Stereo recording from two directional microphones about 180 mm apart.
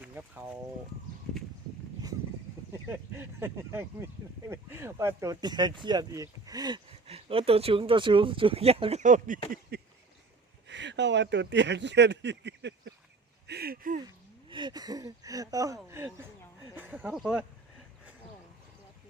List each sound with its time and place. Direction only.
0.0 s speech: 10° right (ahead or behind)
2.9 s speech: 15° right (ahead or behind); by 9.4 s 45° right (ahead or behind)
9.5 s a sound: 60° right (ahead or behind)
10.7 s speech: 80° right
13.5 s speech: 60° right (ahead or behind)
14.5 s speech: 25° right (ahead or behind); by 17.4 s 5° right (ahead or behind)